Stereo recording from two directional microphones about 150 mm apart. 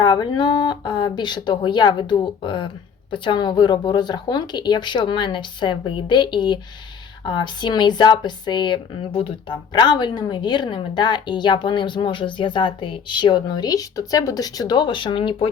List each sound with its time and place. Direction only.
0.0 s speech: 30° left (ahead or behind)